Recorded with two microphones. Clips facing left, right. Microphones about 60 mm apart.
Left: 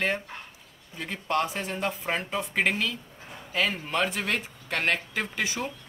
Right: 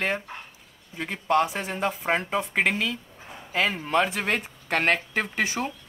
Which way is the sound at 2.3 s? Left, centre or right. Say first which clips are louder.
Right 2 dB; centre.